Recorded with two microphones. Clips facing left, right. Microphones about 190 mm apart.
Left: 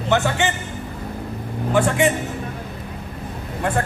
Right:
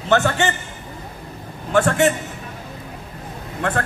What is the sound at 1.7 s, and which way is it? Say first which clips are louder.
Speech: right 1 dB; 15° left (ahead or behind).